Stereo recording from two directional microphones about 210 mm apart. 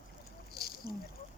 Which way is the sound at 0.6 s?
45° left (ahead or behind).